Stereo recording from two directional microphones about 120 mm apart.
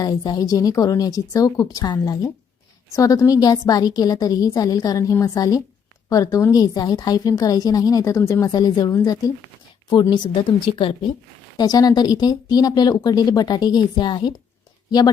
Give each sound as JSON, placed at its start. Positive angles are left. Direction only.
{"t": 0.0, "sound": "a woman's voice", "side_deg": 35}
{"t": 11.5, "sound": "a woman's voice", "side_deg": 35}